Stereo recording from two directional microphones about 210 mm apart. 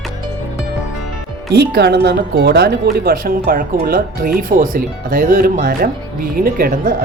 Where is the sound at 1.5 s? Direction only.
50° right (ahead or behind).